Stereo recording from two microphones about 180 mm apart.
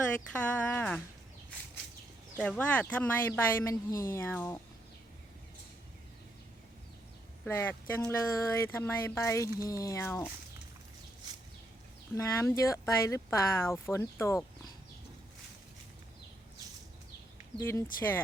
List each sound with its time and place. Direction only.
0.3 s speech: 10° left (ahead or behind)
2.4 s speech: 5° left (ahead or behind)
7.4 s speech: 10° left (ahead or behind)
12.1 s speech: 15° left (ahead or behind)
17.6 s speech: 15° left (ahead or behind)